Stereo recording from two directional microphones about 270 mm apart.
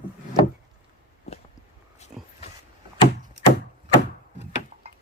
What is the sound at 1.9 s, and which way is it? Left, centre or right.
Dog, left.